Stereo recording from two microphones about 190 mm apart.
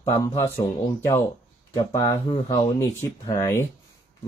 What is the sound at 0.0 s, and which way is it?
Speech, 15° left (ahead or behind).